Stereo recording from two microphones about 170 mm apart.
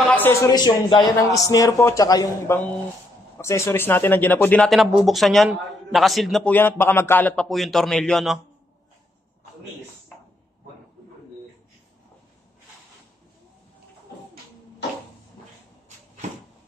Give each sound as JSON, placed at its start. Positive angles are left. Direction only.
{"t": 0.0, "sound": "a man's voice", "side_deg": 10}
{"t": 6.5, "sound": "a man's voice", "side_deg": 15}